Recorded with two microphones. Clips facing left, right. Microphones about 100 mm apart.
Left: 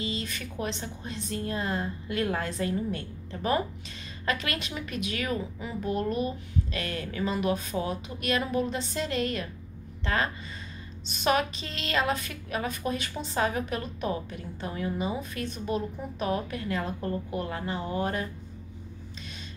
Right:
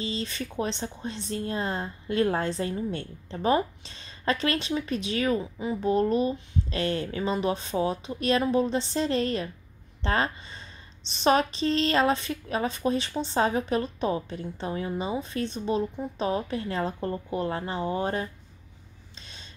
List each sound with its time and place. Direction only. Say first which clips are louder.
0.0 s a woman's voice: right 2 dB; 30° right (ahead or behind)